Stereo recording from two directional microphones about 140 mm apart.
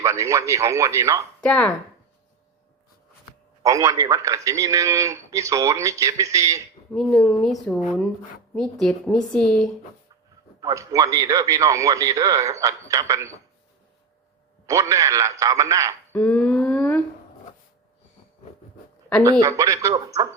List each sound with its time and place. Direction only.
0.0 s a man's voice: 20° right (ahead or behind)
1.4 s speech: 5° left (ahead or behind)
3.6 s a man's voice: 25° right (ahead or behind)
6.9 s speech: centre (ahead or behind)
8.5 s speech: 5° left (ahead or behind)
10.6 s a man's voice: 25° right (ahead or behind)
14.7 s a man's voice: 25° right (ahead or behind)
16.1 s a sound: 10° left (ahead or behind)
19.2 s a man's voice: 25° right (ahead or behind)